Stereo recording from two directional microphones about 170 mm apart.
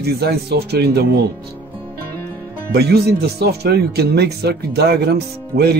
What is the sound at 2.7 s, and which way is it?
Speech, 70° right (ahead or behind).